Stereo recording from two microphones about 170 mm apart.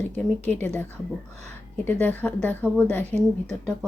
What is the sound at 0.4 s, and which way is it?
A woman's voice, 10° left (ahead or behind).